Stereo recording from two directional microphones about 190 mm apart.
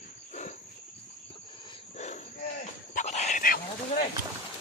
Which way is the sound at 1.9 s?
40° left (ahead or behind).